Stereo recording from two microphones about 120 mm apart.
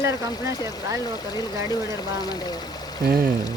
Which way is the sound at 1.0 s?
35° left (ahead or behind).